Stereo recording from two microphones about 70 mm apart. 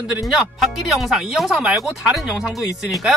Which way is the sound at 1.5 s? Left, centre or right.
Centre.